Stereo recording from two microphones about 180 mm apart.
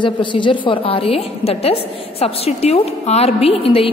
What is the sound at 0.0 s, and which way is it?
A woman's voice, 25° left (ahead or behind).